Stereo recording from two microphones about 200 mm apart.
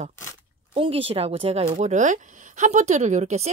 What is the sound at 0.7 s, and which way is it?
Speech, 25° right (ahead or behind).